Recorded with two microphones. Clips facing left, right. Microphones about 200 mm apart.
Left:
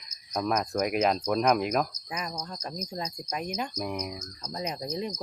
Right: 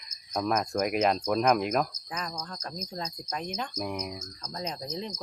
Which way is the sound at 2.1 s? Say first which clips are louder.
Left 1 dB; 10° left (ahead or behind).